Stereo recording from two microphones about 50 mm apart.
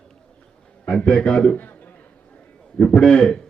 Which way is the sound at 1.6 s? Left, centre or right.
Left.